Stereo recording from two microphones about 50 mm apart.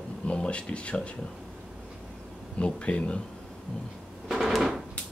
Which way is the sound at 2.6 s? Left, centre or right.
Left.